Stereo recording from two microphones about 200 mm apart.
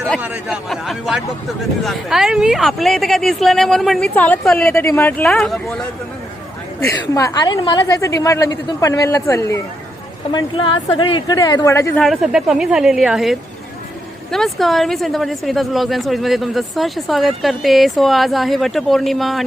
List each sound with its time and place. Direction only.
0.2 s speech: 5° right (ahead or behind)
6.7 s a woman's voice: 15° left (ahead or behind)
12.0 s speech: centre (ahead or behind)